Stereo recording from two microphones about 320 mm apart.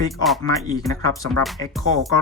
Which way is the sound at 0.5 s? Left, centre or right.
Centre.